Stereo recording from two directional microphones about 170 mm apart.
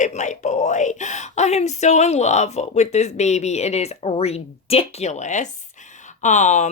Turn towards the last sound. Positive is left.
turn(degrees=45)  # may be behind; listen again after turning